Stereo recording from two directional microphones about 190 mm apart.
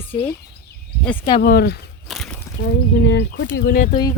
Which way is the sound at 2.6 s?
60° left (ahead or behind).